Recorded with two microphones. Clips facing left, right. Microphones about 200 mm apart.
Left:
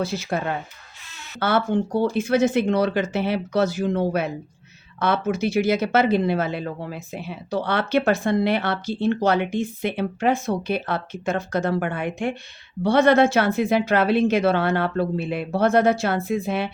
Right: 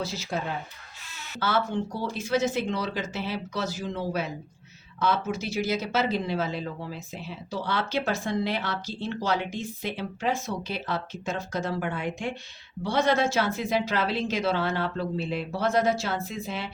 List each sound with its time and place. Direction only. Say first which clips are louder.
0.0 s speech: left 6 dB; 55° left (ahead or behind)